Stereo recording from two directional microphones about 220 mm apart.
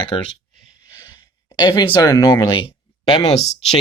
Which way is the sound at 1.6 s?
20° left (ahead or behind).